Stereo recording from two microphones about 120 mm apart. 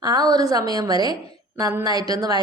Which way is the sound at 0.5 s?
30° right (ahead or behind).